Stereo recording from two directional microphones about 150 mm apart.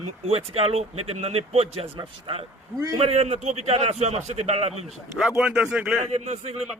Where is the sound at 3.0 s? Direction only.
45° right (ahead or behind).